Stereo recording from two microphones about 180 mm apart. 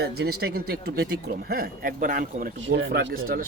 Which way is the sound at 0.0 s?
65° right (ahead or behind).